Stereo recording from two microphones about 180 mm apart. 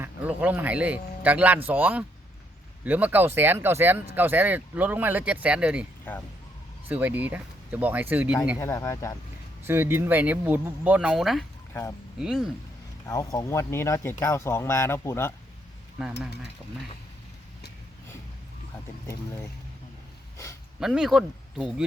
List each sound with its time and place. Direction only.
0.0 s speech: 10° right (ahead or behind)
8.5 s speech: 15° left (ahead or behind)
9.6 s speech: 10° right (ahead or behind)
11.7 s speech: 15° left (ahead or behind)
12.2 s speech: 5° right (ahead or behind)
13.1 s speech: 20° left (ahead or behind)
16.0 s speech: 5° right (ahead or behind)
20.7 s speech: 5° right (ahead or behind)